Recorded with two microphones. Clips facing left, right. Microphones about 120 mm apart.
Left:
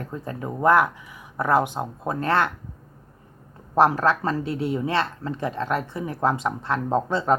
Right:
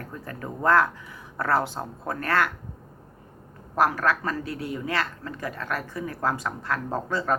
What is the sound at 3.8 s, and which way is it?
Speech, 25° left (ahead or behind).